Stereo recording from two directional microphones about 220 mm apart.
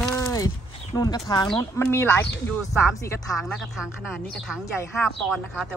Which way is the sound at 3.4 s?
Centre (ahead or behind).